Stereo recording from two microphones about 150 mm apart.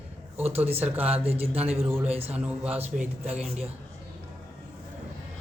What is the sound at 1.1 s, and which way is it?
Speech, 40° right (ahead or behind).